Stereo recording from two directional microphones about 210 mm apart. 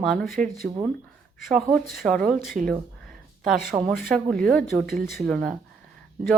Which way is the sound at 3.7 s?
15° right (ahead or behind).